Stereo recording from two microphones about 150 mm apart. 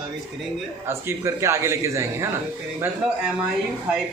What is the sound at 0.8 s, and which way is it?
A man's voice, 15° right (ahead or behind).